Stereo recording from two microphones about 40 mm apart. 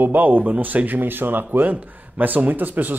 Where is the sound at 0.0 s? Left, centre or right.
Right.